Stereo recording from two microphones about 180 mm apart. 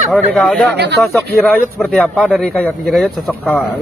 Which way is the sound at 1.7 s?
Centre (ahead or behind).